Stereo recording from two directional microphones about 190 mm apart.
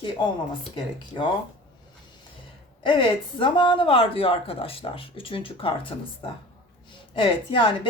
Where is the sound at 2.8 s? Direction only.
25° left (ahead or behind).